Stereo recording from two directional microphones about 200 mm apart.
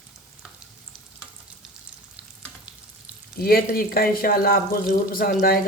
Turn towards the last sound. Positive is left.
turn(degrees=45)  # may be behind; listen again after turning